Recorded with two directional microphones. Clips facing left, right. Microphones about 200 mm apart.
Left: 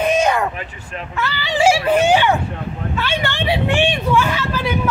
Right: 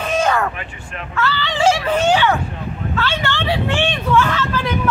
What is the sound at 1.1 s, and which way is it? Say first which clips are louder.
Speech: right 1 dB; 15° left (ahead or behind).